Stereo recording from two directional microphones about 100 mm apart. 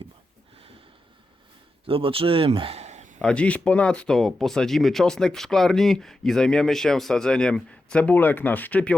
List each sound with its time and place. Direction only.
1.8 s speech: 65° right (ahead or behind); by 2.9 s 80° right
3.2 s speech: 10° left (ahead or behind)